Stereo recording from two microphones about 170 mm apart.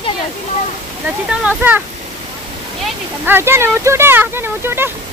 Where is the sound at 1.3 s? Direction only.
10° right (ahead or behind).